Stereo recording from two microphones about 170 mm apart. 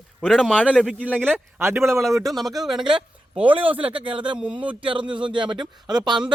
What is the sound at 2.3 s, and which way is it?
Speech, centre (ahead or behind).